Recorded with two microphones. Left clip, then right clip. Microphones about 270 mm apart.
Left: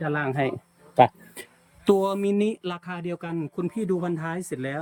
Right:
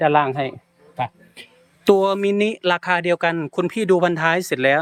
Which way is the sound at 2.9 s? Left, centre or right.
Right.